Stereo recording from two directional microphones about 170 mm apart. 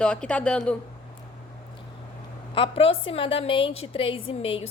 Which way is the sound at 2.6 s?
35° left (ahead or behind).